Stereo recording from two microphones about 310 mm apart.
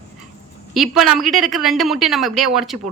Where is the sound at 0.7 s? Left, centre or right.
Centre.